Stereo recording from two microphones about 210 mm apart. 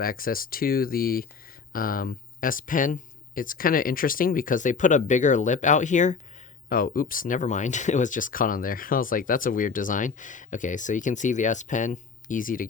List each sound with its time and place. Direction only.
0.0 s speech: 45° left (ahead or behind)